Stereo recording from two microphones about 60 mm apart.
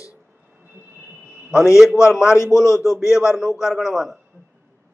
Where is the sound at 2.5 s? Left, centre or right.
Left.